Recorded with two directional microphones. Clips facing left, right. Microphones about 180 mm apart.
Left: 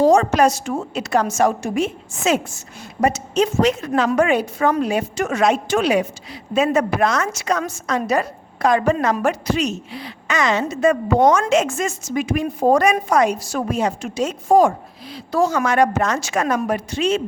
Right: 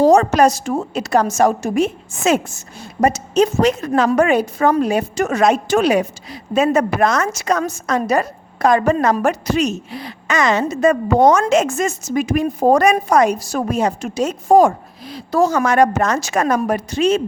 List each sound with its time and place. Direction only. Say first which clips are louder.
0.0 s a woman's voice: right 2 dB; 40° right (ahead or behind)